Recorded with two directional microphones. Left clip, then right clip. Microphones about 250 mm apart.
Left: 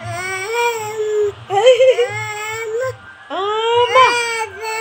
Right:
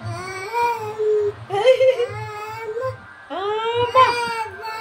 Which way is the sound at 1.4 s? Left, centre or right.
Centre.